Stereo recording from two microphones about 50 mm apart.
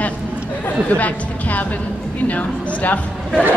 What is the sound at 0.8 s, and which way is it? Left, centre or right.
A woman's voice, left.